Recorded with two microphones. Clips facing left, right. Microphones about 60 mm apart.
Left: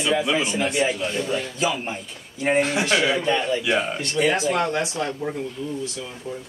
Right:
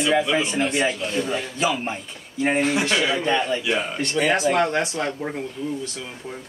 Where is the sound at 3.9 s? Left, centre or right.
Right.